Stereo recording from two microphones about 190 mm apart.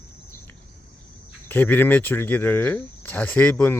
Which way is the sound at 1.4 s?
10° left (ahead or behind).